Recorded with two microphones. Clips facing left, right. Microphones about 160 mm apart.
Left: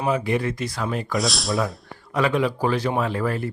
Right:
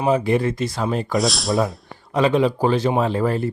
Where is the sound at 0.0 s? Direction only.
30° right (ahead or behind).